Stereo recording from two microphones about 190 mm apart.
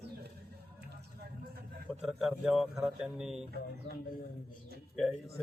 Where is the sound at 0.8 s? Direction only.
55° right (ahead or behind).